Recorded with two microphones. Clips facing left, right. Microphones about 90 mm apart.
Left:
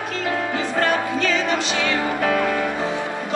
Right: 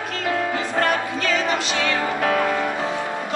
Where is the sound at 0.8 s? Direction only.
Centre (ahead or behind).